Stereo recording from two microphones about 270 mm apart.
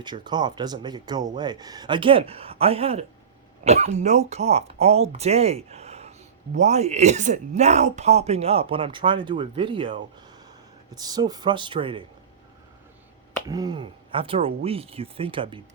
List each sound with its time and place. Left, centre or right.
0.0 s speech: centre
13.5 s speech: centre